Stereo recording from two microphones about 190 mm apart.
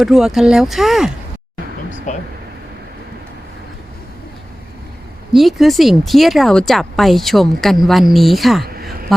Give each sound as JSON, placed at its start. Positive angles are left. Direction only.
{"t": 0.0, "sound": "speech", "side_deg": 0}
{"t": 2.1, "sound": "air conditioning", "side_deg": 40}
{"t": 5.3, "sound": "speech", "side_deg": 0}
{"t": 8.6, "sound": "a sound", "side_deg": -50}